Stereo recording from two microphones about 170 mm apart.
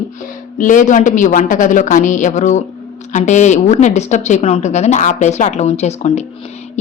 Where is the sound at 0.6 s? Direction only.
50° left (ahead or behind).